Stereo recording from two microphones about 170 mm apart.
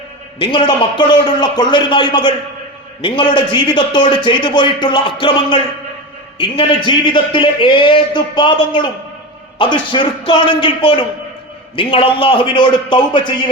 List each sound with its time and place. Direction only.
0.3 s speech: 25° left (ahead or behind)